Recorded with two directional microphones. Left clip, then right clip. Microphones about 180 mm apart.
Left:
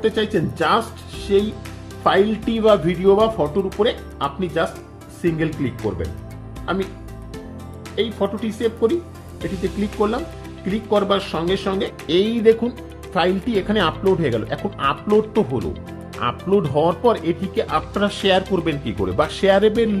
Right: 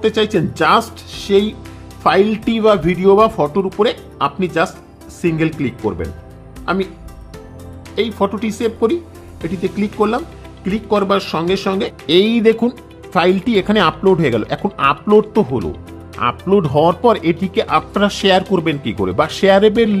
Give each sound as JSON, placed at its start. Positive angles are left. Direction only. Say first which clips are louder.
{"t": 0.0, "sound": "speech", "louder": "right 4 dB", "side_deg": -40}
{"t": 7.9, "sound": "speech", "louder": "right 4 dB", "side_deg": -40}